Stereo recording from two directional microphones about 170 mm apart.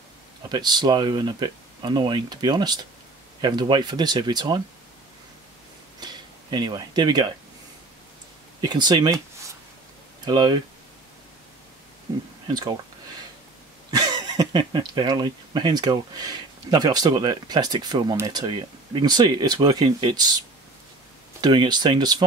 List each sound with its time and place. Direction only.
0.5 s speech: 25° right (ahead or behind)
5.9 s a sound: 25° right (ahead or behind)
8.6 s speech: 25° right (ahead or behind)
10.2 s speech: 25° right (ahead or behind)
12.1 s speech: 20° right (ahead or behind)
13.8 s speech: 25° right (ahead or behind)
21.4 s speech: 25° right (ahead or behind)